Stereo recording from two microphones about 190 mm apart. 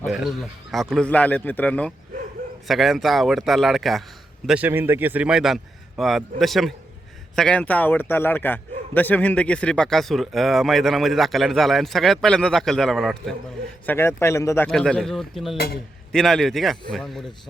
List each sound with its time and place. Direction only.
0.0 s speech: centre (ahead or behind); by 14.7 s 15° left (ahead or behind)
14.7 s speech: 5° left (ahead or behind)
15.5 s speech: 55° left (ahead or behind)
16.1 s speech: centre (ahead or behind)